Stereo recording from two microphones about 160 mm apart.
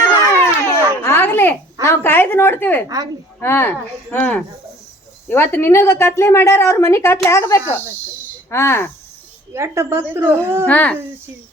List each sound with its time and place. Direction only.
0.3 s a sound: 15° left (ahead or behind)
1.9 s a woman's voice: 15° left (ahead or behind)
9.5 s speech: 15° right (ahead or behind)
10.7 s a woman's voice: 10° left (ahead or behind)